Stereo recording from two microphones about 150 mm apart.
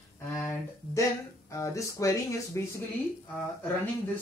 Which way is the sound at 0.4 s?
15° left (ahead or behind).